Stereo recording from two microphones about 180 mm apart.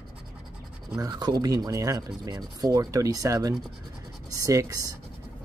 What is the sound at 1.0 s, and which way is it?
Speech, 20° right (ahead or behind).